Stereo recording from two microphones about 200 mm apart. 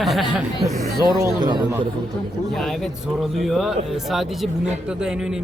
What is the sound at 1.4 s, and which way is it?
Speech, 20° right (ahead or behind).